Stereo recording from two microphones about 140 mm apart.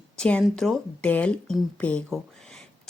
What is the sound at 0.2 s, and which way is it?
A woman's voice, 5° left (ahead or behind).